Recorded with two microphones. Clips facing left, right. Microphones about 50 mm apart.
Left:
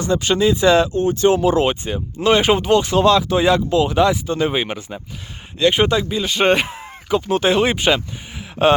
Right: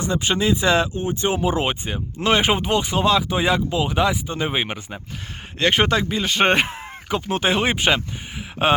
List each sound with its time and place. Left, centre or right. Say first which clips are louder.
0.0 s speech: left 4 dB; right
5.5 s speech: left 3 dB; right; by 8.8 s centre